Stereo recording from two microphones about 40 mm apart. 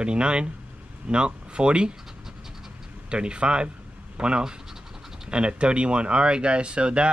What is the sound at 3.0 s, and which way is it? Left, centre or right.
Speech, right.